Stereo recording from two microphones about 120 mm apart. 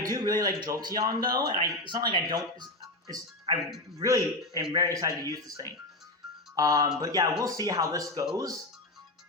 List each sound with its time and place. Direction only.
0.0 s speech: 30° right (ahead or behind)
4.0 s speech: 30° right (ahead or behind)